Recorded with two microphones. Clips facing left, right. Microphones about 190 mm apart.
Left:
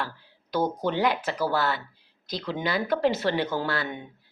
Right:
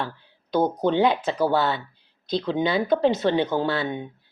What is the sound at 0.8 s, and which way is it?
Speech, 20° right (ahead or behind).